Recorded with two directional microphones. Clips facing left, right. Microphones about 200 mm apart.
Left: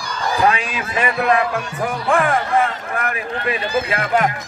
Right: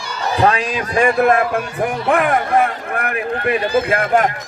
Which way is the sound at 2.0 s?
60° right (ahead or behind).